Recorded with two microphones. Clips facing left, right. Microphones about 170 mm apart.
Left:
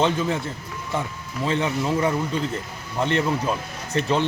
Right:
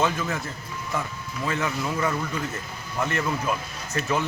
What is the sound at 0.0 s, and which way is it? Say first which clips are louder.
Speech: left 4 dB; 30° left (ahead or behind).